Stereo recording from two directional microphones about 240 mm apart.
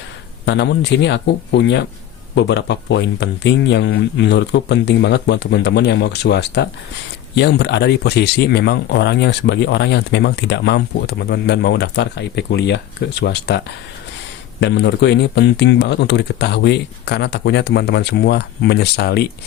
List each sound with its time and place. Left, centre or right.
0.4 s speech: left
14.6 s speech: left